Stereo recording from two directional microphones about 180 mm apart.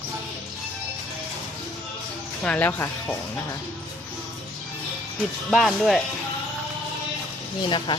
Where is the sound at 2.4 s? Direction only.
10° left (ahead or behind).